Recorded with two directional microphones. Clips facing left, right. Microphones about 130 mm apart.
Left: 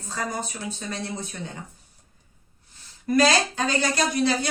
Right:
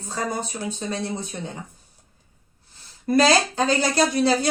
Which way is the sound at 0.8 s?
25° right (ahead or behind).